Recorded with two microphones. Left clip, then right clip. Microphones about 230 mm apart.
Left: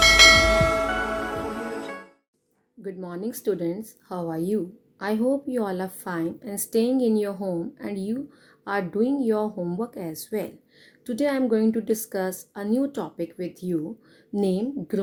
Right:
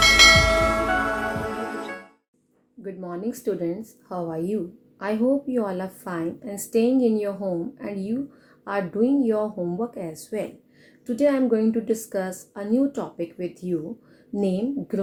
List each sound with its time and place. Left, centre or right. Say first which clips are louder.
0.0 s church bell: even; centre
1.5 s music: right 2 dB; centre
2.8 s a woman's voice: right 1 dB; left